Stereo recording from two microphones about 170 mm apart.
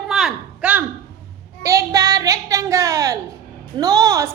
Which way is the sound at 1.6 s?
20° right (ahead or behind).